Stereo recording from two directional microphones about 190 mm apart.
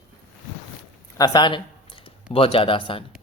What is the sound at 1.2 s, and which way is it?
Speech, 20° left (ahead or behind).